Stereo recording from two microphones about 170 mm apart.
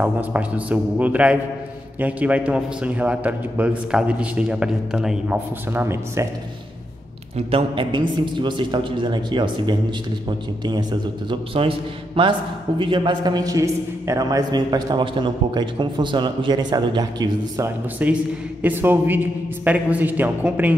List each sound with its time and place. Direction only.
0.0 s a man's voice: 10° right (ahead or behind)
7.3 s a man's voice: 30° right (ahead or behind)
17.9 s a man's voice: 10° right (ahead or behind)